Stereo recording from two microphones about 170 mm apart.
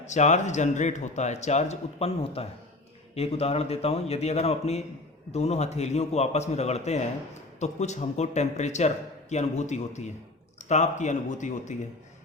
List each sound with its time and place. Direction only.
0.0 s a man's voice: 45° left (ahead or behind)